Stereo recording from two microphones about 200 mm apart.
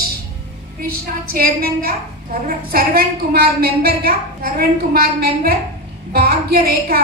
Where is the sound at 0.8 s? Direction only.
50° right (ahead or behind).